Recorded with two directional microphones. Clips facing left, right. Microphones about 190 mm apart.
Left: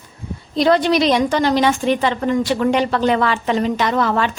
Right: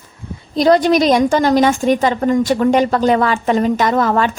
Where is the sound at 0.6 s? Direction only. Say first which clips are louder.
Right 3 dB; 40° right (ahead or behind).